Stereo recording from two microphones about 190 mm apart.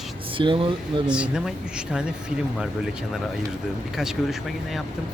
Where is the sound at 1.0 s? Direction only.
5° right (ahead or behind).